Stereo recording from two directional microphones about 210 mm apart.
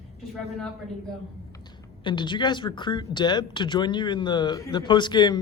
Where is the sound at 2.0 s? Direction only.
20° left (ahead or behind).